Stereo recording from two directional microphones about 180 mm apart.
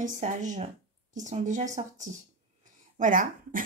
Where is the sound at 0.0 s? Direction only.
45° right (ahead or behind).